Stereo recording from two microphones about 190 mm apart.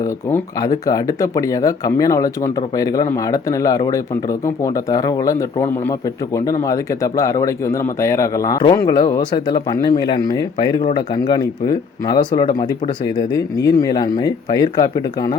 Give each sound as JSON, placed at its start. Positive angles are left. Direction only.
{"t": 0.0, "sound": "speech", "side_deg": 15}
{"t": 13.7, "sound": "speech", "side_deg": 20}